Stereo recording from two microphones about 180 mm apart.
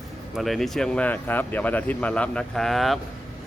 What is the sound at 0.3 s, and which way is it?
Speech, centre (ahead or behind).